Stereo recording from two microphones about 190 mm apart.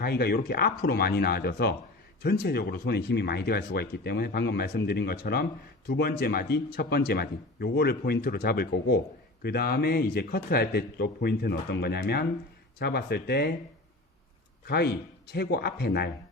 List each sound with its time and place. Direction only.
0.0 s speech: 55° left (ahead or behind)
14.7 s speech: 60° left (ahead or behind)